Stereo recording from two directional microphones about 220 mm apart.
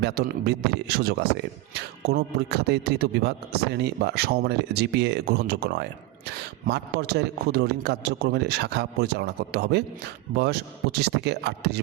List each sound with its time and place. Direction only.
0.0 s a man's voice: 45° right (ahead or behind)